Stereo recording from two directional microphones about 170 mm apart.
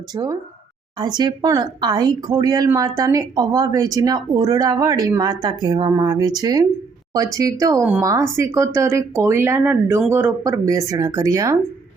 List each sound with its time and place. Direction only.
0.1 s speech: 25° right (ahead or behind)